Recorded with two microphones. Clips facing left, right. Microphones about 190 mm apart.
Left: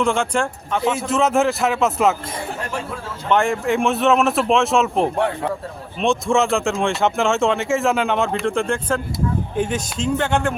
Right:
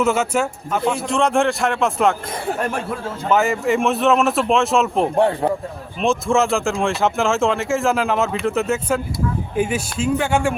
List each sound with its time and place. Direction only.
0.0 s speech: 5° right (ahead or behind)
3.2 s speech: centre (ahead or behind)